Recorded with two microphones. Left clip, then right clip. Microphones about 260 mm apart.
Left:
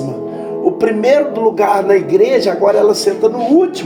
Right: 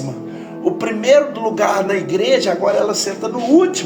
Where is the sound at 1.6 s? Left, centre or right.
Right.